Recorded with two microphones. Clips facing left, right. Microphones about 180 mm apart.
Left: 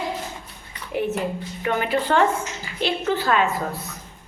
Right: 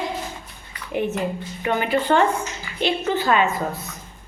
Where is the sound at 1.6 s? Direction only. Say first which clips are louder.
Right 2 dB; centre (ahead or behind).